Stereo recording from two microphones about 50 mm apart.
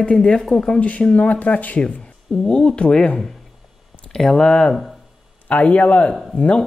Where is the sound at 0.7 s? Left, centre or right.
Left.